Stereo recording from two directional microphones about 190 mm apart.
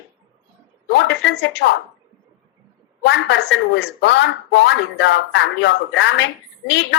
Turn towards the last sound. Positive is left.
turn(degrees=70)  # may be behind; listen again after turning